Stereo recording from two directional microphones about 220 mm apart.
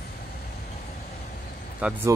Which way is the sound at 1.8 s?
5° right (ahead or behind).